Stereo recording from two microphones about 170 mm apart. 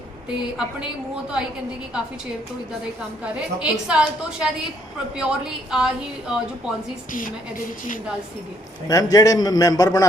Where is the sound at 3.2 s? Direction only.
5° right (ahead or behind).